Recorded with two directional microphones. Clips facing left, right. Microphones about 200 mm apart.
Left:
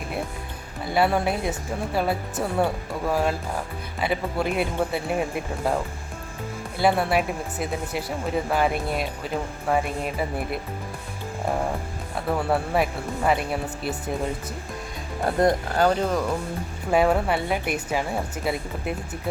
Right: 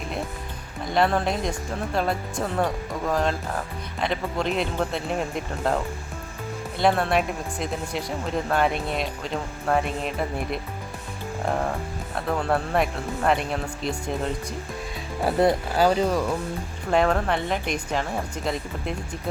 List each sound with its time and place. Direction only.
0.9 s speech: 5° left (ahead or behind)
15.2 s speech: 5° right (ahead or behind)
16.9 s speech: 10° left (ahead or behind)